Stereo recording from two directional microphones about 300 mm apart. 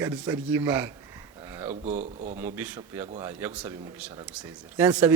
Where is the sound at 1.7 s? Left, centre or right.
Right.